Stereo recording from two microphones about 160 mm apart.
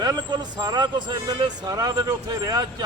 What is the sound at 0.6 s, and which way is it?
A man's voice, 25° right (ahead or behind).